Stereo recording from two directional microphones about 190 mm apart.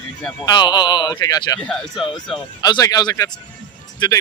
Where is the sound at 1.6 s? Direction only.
Centre (ahead or behind).